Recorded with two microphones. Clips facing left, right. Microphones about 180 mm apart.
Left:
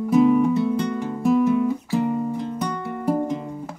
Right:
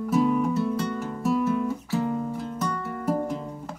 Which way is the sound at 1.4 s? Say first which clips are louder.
Left 6 dB; 15° left (ahead or behind).